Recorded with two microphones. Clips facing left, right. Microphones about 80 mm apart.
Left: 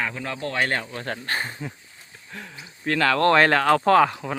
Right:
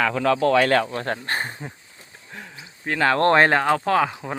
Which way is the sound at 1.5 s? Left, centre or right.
Right.